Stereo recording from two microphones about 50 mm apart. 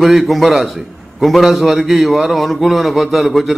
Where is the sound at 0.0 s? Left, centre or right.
Centre.